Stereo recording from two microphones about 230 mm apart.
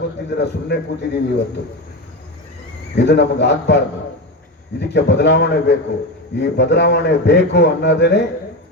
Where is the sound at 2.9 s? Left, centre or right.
Left.